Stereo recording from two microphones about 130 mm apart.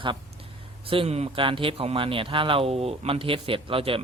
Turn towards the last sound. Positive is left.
turn(degrees=-45)  # may be behind; listen again after turning